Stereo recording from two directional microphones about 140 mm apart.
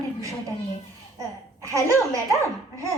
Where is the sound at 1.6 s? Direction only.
20° right (ahead or behind).